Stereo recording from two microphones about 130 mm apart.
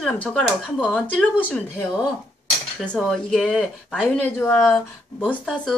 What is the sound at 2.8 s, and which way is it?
A woman's voice, 5° left (ahead or behind).